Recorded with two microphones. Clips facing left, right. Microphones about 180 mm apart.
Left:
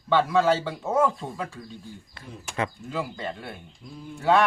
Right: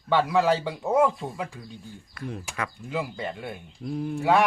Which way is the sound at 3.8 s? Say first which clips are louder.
Right 14 dB; 55° right (ahead or behind).